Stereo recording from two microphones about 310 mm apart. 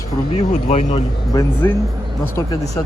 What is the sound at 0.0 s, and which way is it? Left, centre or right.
Speech, left.